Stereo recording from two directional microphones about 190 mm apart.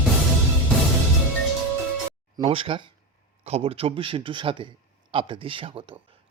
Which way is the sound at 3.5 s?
30° right (ahead or behind).